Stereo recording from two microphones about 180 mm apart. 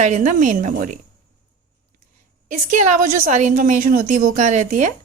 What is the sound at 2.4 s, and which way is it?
A woman's voice, 45° right (ahead or behind).